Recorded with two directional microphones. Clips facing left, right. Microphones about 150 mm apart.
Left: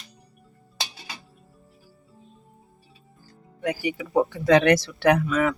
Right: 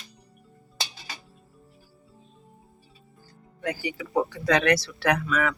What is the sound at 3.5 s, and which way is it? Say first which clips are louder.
Speech: left 4 dB; 20° left (ahead or behind).